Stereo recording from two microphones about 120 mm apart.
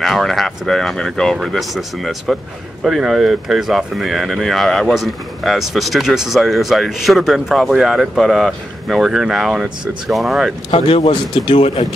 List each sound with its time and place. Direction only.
0.0 s speech: centre (ahead or behind)
10.7 s a man's voice: 50° left (ahead or behind)